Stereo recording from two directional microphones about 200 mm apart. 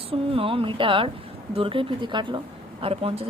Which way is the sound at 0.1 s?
25° right (ahead or behind).